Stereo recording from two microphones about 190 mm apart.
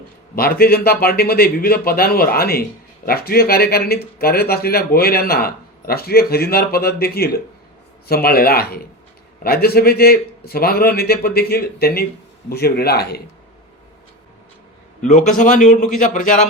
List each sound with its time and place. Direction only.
0.3 s speech: 50° left (ahead or behind)
15.0 s speech: 40° left (ahead or behind)